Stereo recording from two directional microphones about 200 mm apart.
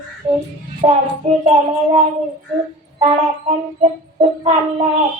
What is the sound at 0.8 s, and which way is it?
Child singing, 30° right (ahead or behind).